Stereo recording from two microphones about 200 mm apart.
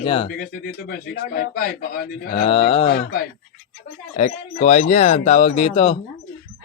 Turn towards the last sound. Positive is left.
turn(degrees=30)  # may be behind; listen again after turning